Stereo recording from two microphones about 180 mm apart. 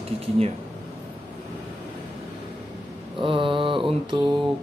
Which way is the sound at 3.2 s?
30° right (ahead or behind).